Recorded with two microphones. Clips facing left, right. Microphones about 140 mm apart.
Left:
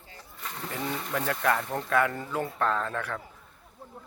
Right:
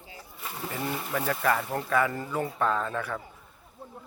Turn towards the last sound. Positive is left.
turn(degrees=0)  # may be behind; listen again after turning